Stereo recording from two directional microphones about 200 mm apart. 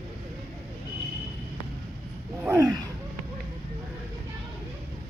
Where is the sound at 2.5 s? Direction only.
20° right (ahead or behind).